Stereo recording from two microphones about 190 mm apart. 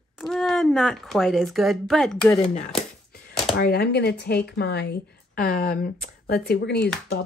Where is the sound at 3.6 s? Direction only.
55° left (ahead or behind).